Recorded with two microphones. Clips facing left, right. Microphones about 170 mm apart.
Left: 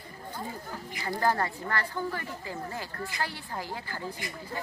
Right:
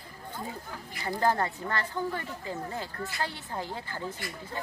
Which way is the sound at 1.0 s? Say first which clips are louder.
Right 1 dB; 20° right (ahead or behind).